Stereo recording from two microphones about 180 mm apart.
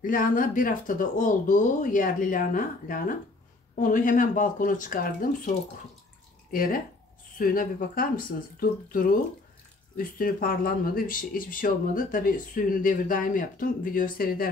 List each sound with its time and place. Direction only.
0.0 s speech: 50° left (ahead or behind)
6.5 s speech: 50° left (ahead or behind)